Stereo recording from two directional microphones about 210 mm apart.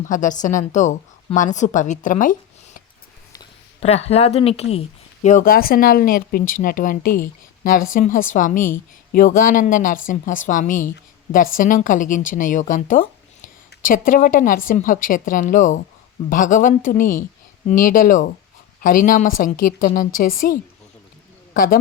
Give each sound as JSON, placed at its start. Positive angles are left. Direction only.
{"t": 0.0, "sound": "a woman's voice", "side_deg": 35}
{"t": 3.8, "sound": "a woman's voice", "side_deg": 30}